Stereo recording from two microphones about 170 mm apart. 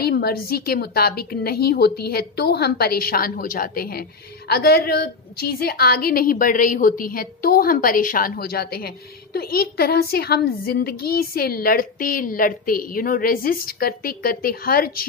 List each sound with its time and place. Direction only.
0.0 s a woman's voice: 65° left (ahead or behind)